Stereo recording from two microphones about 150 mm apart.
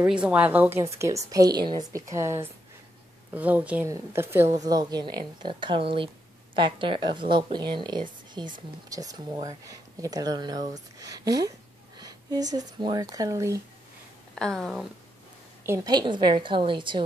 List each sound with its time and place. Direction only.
0.0 s a woman's voice: 5° right (ahead or behind)
14.3 s speech: 5° left (ahead or behind)
15.6 s speech: 20° right (ahead or behind)